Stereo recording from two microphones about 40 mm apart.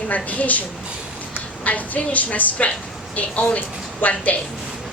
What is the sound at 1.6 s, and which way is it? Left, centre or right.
A woman's voice, left.